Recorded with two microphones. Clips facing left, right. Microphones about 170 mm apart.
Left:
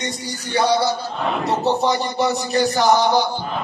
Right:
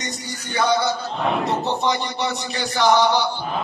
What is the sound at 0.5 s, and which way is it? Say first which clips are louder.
Music: left 2 dB; 30° left (ahead or behind).